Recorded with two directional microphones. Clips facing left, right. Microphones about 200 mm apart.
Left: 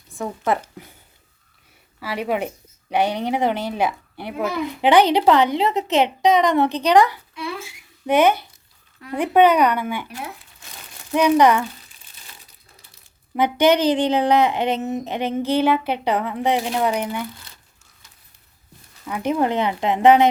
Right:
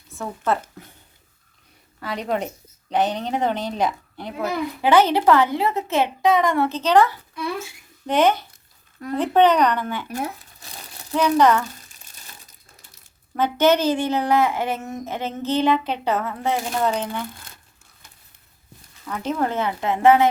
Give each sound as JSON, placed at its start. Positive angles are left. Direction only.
{"t": 0.1, "sound": "speech", "side_deg": 15}
{"t": 2.0, "sound": "a child's voice", "side_deg": 5}
{"t": 10.1, "sound": "a sound", "side_deg": -45}
{"t": 11.1, "sound": "speech", "side_deg": 15}
{"t": 11.9, "sound": "crumpling", "side_deg": -45}
{"t": 13.3, "sound": "speech", "side_deg": 15}
{"t": 17.5, "sound": "crumpling", "side_deg": -50}
{"t": 19.0, "sound": "speech", "side_deg": 15}